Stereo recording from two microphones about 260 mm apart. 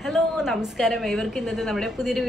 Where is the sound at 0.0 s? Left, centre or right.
Centre.